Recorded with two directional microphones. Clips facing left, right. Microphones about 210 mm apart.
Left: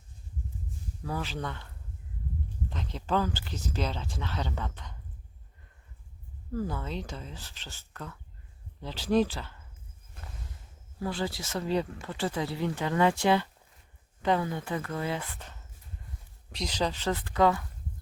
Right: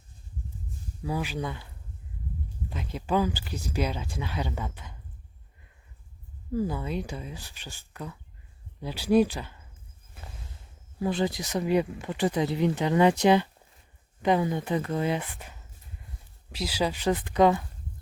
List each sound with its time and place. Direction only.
1.0 s speech: 10° right (ahead or behind)
6.5 s speech: 10° right (ahead or behind)
10.2 s a sound: 5° right (ahead or behind)
11.0 s speech: 20° right (ahead or behind)